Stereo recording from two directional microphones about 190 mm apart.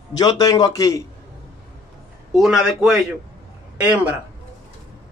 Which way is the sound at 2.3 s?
Centre (ahead or behind).